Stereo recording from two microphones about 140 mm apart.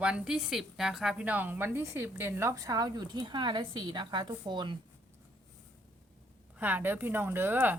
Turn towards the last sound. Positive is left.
turn(degrees=-15)  # may be behind; listen again after turning